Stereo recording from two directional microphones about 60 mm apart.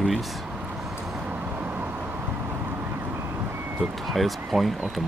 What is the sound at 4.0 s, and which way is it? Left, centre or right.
Speech, centre.